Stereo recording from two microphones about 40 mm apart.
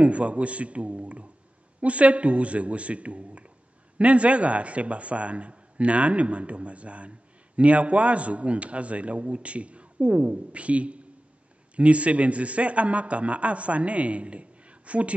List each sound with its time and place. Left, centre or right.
0.0 s a man's voice: right